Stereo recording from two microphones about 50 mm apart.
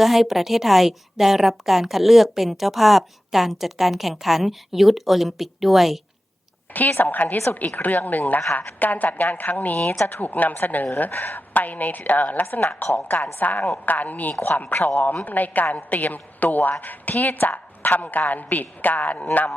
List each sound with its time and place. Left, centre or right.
0.0 s a woman's voice: centre
6.7 s a woman's voice: left